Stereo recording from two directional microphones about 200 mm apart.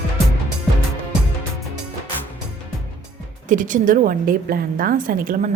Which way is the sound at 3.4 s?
40° right (ahead or behind).